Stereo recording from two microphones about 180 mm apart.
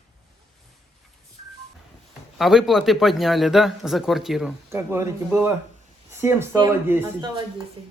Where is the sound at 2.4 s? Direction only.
Centre (ahead or behind).